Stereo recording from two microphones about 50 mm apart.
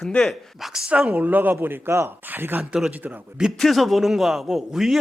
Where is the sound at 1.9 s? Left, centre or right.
Right.